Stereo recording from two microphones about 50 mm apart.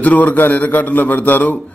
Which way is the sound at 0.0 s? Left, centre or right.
Left.